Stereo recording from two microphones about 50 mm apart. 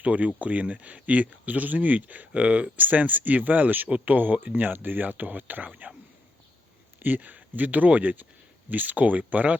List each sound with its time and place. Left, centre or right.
0.0 s speech: right
7.0 s speech: right